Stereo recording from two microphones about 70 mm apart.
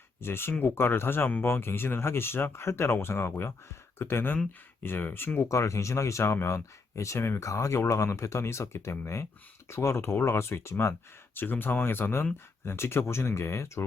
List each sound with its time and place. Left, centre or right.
0.2 s speech: left
5.5 s speech: left
11.3 s speech: left